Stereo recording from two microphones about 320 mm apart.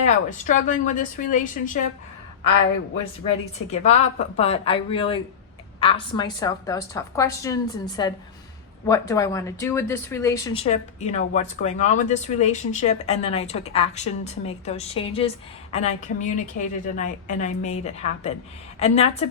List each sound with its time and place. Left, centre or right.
0.0 s speech: left
3.7 s a woman's voice: left